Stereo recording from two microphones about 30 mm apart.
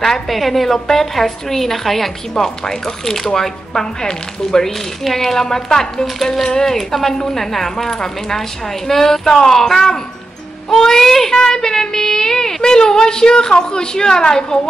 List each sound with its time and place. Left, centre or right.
0.3 s a woman's voice: centre
2.4 s a woman's voice: centre
5.0 s a woman's voice: centre
11.3 s speech: left